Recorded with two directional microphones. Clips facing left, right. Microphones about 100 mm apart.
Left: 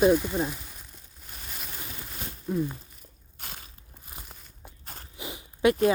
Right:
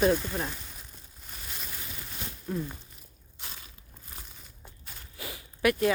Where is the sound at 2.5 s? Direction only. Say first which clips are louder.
Left 5 dB; 10° left (ahead or behind).